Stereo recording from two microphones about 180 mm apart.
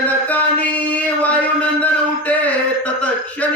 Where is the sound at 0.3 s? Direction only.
10° left (ahead or behind).